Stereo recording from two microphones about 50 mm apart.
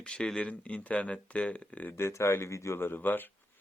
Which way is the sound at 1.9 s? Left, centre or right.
Left.